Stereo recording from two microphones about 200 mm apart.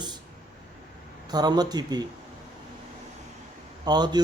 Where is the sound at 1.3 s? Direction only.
20° right (ahead or behind).